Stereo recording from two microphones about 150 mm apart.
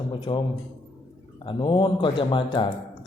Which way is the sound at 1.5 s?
30° left (ahead or behind).